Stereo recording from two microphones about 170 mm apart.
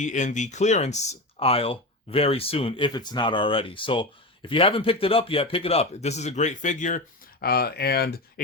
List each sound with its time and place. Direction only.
0.0 s speech: 45° left (ahead or behind); by 8.1 s 70° left (ahead or behind)